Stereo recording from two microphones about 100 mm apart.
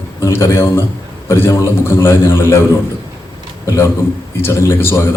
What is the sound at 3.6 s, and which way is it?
A man's voice, 30° left (ahead or behind).